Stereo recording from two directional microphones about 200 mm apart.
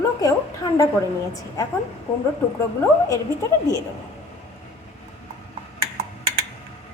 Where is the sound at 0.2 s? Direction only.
20° left (ahead or behind).